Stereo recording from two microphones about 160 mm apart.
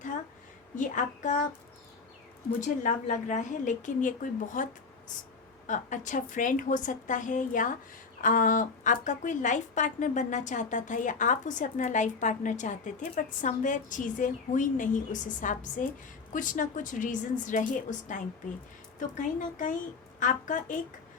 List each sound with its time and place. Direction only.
0.8 s a woman's voice: 50° left (ahead or behind)
2.5 s a woman's voice: 50° left (ahead or behind)